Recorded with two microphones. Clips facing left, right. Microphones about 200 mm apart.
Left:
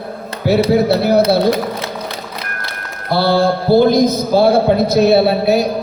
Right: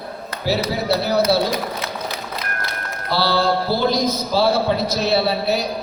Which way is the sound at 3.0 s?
50° left (ahead or behind).